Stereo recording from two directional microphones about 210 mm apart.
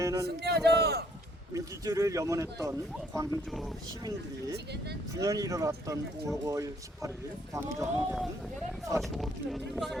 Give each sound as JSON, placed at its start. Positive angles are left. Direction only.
{"t": 0.0, "sound": "a sound", "side_deg": -15}
{"t": 0.4, "sound": "speech", "side_deg": -50}
{"t": 1.5, "sound": "speech", "side_deg": -15}
{"t": 4.5, "sound": "speech", "side_deg": -50}
{"t": 5.1, "sound": "speech", "side_deg": -15}
{"t": 9.0, "sound": "speech", "side_deg": 0}